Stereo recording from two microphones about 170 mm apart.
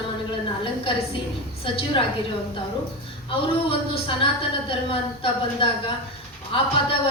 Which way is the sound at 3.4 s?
30° left (ahead or behind).